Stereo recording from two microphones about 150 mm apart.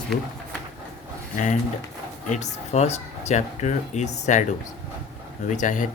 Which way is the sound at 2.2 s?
50° left (ahead or behind).